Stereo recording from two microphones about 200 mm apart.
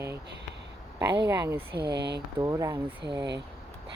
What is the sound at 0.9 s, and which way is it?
Speech, 20° right (ahead or behind).